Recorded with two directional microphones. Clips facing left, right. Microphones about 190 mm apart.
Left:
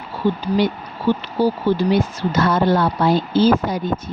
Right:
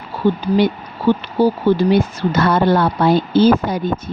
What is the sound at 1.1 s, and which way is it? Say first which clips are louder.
Speech: right 3 dB; 55° right (ahead or behind).